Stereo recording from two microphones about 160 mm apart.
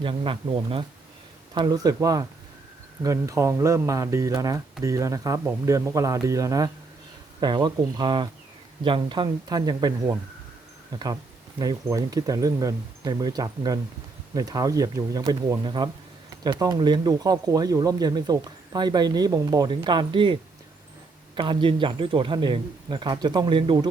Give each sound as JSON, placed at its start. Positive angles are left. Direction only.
{"t": 0.0, "sound": "speech", "side_deg": -30}